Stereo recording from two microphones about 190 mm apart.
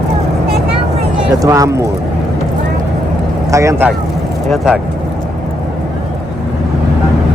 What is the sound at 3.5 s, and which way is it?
Speech, 15° right (ahead or behind).